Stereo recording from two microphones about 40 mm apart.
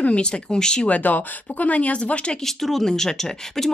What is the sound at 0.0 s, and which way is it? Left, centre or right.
Speech, left.